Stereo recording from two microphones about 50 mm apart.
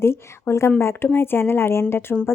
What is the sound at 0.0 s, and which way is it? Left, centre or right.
Speech, left.